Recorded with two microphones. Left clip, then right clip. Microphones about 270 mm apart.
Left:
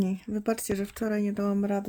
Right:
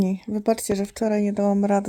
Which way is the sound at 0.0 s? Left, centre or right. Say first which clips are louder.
Right 6 dB; centre.